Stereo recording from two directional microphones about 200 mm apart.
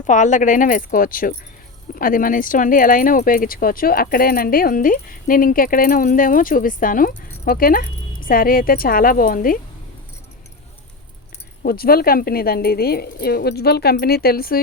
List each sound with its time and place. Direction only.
0.1 s speech: 40° left (ahead or behind)
11.6 s speech: 50° left (ahead or behind)